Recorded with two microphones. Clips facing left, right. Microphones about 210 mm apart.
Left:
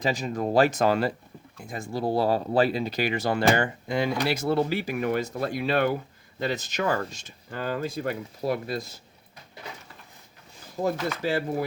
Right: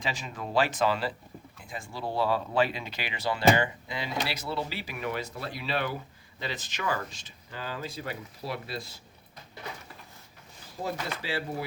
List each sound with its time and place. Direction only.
0.0 s speech: 40° left (ahead or behind)
10.8 s speech: 45° left (ahead or behind)